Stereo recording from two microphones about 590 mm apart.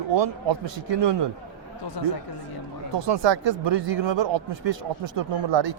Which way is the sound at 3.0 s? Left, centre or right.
Right.